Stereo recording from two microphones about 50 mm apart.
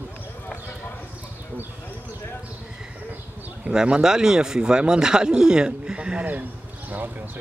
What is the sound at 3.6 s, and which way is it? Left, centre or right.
Speech, centre.